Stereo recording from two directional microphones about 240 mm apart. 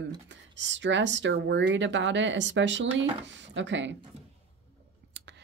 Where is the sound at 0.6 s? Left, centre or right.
Right.